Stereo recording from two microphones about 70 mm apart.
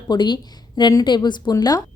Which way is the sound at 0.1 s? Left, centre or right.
Left.